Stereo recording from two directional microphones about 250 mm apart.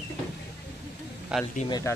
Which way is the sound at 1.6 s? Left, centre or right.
Centre.